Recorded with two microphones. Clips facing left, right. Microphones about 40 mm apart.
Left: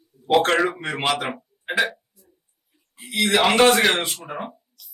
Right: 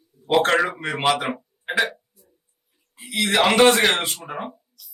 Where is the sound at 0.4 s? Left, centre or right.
Centre.